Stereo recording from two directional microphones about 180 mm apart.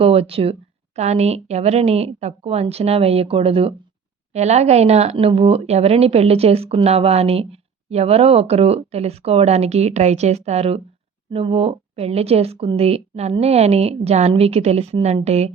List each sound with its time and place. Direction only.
0.0 s speech: 30° right (ahead or behind)